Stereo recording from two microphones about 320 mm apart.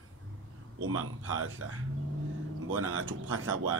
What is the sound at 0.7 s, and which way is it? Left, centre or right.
Speech, right.